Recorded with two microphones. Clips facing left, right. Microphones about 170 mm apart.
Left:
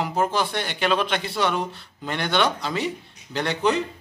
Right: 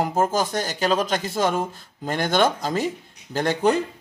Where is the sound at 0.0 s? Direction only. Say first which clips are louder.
Right 2 dB; 45° right (ahead or behind).